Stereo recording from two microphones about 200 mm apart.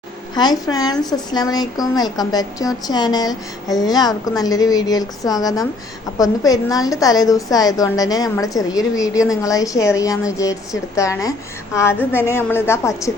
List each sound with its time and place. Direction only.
0.3 s a woman's voice: 20° left (ahead or behind)